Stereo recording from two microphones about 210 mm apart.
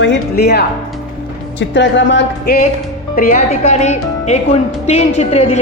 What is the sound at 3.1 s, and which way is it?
Speech, 40° left (ahead or behind).